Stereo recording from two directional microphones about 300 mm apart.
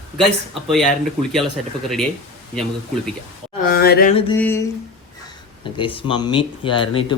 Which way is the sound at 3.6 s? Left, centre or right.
Left.